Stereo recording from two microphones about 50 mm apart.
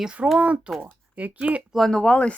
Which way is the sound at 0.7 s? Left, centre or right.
Right.